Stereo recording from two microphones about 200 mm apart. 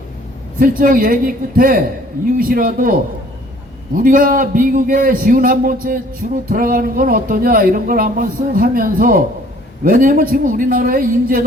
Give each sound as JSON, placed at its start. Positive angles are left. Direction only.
{"t": 0.6, "sound": "speech", "side_deg": -45}